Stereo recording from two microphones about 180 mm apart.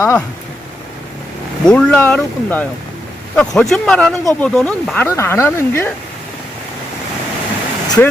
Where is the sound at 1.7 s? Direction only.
5° left (ahead or behind).